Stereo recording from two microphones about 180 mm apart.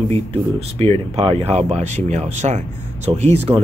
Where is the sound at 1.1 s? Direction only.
35° right (ahead or behind).